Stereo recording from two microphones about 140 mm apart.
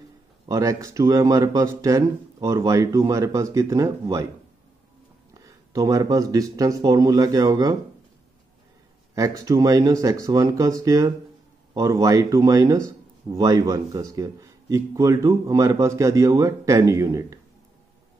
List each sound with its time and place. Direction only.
0.5 s a man's voice: 25° right (ahead or behind)
5.3 s a man's voice: 25° right (ahead or behind)
9.1 s a man's voice: 25° right (ahead or behind)